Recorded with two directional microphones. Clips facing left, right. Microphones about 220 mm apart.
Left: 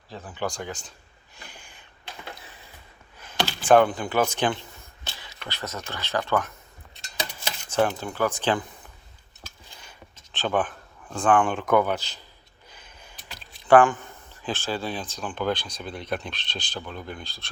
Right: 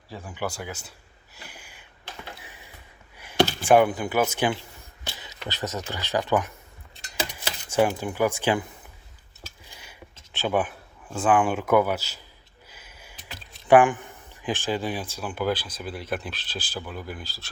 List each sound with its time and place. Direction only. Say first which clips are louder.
0.1 s speech: left 1 dB; 10° right (ahead or behind)
1.4 s a sound: right 1 dB; 5° right (ahead or behind)
3.7 s speech: left 2 dB; 10° right (ahead or behind)
5.1 s speech: right 3 dB; 20° right (ahead or behind)
7.7 s speech: right 2 dB; 10° right (ahead or behind)
9.6 s a sound: right 1 dB; 10° right (ahead or behind)
10.3 s speech: right 1 dB; 10° right (ahead or behind)
12.7 s a sound: even; 5° right (ahead or behind)
13.7 s speech: even; 15° right (ahead or behind)